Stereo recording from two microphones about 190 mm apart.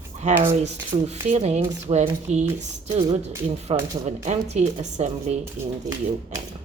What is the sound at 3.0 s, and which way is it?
Speech, 20° right (ahead or behind).